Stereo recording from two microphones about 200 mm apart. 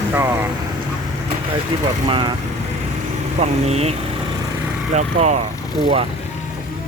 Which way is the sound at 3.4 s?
30° right (ahead or behind).